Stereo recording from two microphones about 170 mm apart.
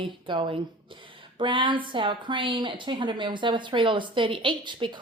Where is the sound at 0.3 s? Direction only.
30° right (ahead or behind).